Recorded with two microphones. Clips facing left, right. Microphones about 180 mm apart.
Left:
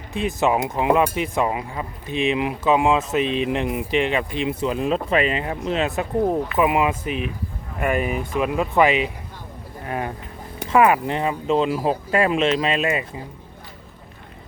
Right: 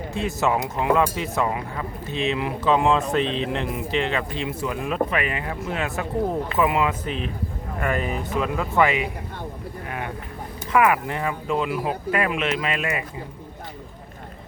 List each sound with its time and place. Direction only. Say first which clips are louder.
0.1 s speech: left 3 dB; 15° left (ahead or behind)
10.7 s speech: left 3 dB; 25° left (ahead or behind)